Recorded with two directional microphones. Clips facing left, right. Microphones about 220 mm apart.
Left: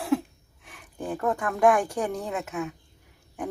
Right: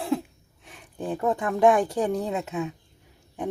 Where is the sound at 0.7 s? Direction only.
25° right (ahead or behind).